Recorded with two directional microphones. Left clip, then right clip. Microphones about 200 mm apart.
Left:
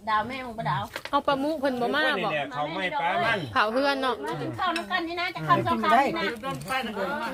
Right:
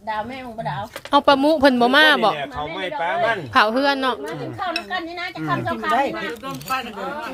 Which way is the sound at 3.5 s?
20° right (ahead or behind).